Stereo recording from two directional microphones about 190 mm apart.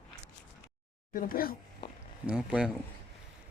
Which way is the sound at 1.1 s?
50° left (ahead or behind).